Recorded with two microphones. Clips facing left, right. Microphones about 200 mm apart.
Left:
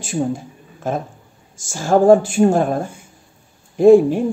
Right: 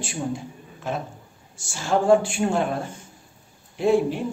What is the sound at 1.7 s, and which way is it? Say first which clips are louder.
A woman's voice: left 7 dB; 45° left (ahead or behind).